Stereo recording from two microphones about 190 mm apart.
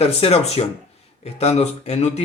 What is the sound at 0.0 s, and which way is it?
Speech, 30° left (ahead or behind).